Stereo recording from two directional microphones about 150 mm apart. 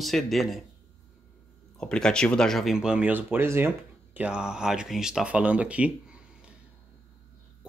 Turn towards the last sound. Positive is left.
turn(degrees=-10)  # may be behind; listen again after turning